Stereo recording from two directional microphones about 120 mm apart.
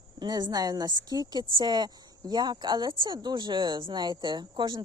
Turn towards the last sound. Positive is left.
turn(degrees=-40)  # may be behind; listen again after turning